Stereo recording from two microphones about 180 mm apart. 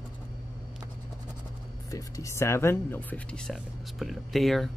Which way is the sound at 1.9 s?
20° left (ahead or behind).